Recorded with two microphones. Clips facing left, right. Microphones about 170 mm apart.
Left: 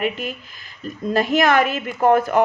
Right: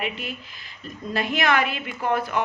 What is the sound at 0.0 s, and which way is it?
Speech, 45° left (ahead or behind).